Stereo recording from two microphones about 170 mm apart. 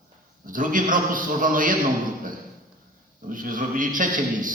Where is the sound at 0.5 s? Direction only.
50° right (ahead or behind).